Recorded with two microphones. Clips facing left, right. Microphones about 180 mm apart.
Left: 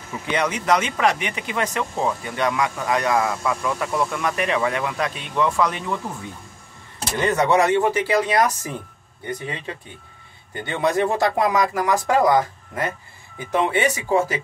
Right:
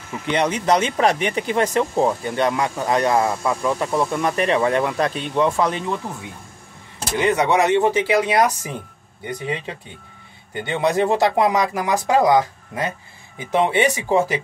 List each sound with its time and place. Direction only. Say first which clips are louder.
0.3 s speech: right 2 dB; 30° right (ahead or behind)
7.2 s speech: right 1 dB; 15° right (ahead or behind)